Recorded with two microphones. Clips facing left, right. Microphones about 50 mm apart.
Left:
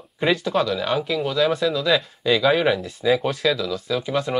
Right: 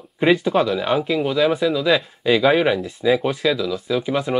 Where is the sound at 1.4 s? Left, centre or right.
Centre.